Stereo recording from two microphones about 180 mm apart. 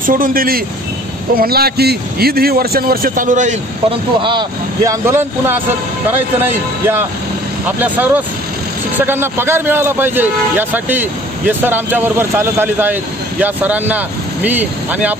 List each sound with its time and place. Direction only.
0.0 s a man's voice: 50° right (ahead or behind)
4.2 s speech: 25° right (ahead or behind)
5.0 s a man's voice: 15° right (ahead or behind)
7.6 s a man's voice: 10° right (ahead or behind)